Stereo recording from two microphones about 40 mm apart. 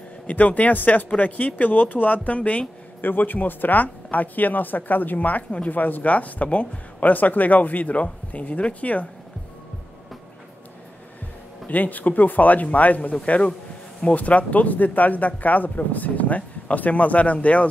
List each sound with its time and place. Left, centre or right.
0.3 s speech: left
3.0 s speech: left
11.7 s speech: left
13.2 s speech: left
14.1 s speech: left